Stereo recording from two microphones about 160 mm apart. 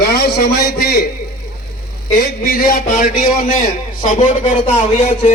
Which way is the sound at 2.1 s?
65° left (ahead or behind).